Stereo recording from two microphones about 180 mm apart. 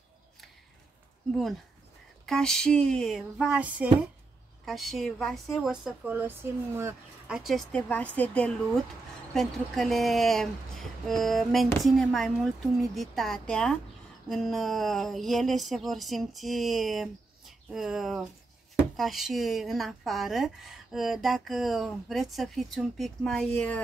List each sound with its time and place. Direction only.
2.2 s speech: 5° left (ahead or behind)